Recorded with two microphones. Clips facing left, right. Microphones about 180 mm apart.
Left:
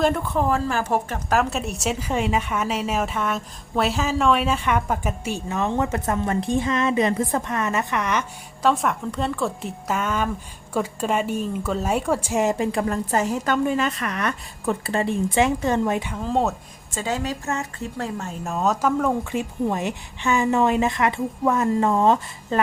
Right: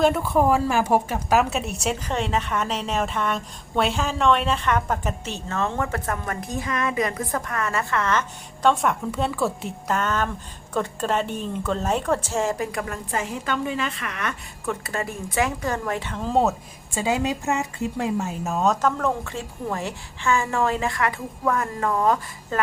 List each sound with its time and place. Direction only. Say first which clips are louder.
0.0 s a woman's voice: right 2 dB; 5° right (ahead or behind); by 8.2 s 15° left (ahead or behind)
8.6 s a woman's voice: right 1 dB; centre (ahead or behind); by 16.1 s 20° left (ahead or behind)
16.1 s a woman's voice: right 1 dB; centre (ahead or behind)
16.9 s a woman's voice: right 3 dB; 10° right (ahead or behind); by 22.6 s 25° left (ahead or behind)